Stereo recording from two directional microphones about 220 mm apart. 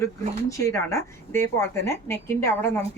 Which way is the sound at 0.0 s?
15° left (ahead or behind).